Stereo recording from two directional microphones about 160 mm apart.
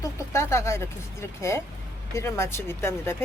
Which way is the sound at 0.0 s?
20° left (ahead or behind).